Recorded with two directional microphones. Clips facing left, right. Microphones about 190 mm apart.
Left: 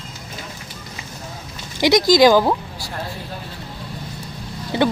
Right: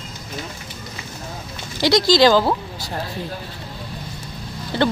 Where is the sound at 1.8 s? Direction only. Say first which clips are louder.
Left 2 dB; 15° left (ahead or behind).